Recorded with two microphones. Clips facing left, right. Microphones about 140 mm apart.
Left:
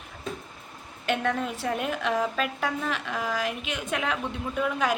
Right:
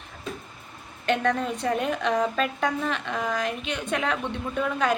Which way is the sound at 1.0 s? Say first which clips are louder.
Right 3 dB; 5° left (ahead or behind).